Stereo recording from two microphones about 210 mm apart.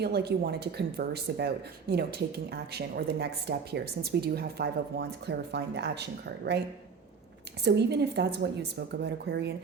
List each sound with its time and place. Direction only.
0.0 s speech: 50° right (ahead or behind)
7.6 s speech: 55° right (ahead or behind)